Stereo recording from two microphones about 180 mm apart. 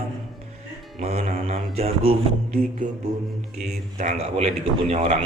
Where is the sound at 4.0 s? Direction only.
40° right (ahead or behind).